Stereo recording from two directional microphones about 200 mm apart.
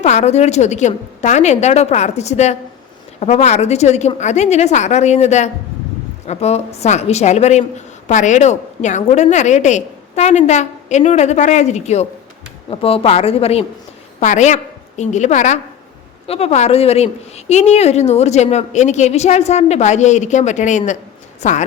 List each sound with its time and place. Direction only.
0.0 s a woman's voice: 35° left (ahead or behind)